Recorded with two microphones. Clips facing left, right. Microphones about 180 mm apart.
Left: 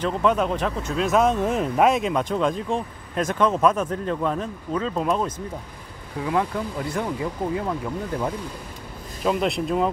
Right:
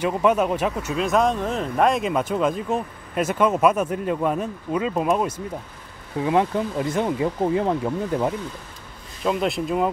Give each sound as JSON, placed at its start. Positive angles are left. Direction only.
{"t": 0.0, "sound": "speech", "side_deg": -10}
{"t": 6.2, "sound": "speech", "side_deg": -20}
{"t": 9.2, "sound": "speech", "side_deg": 0}